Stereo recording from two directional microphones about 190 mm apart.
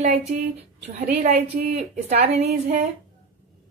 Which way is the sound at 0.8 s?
55° right (ahead or behind).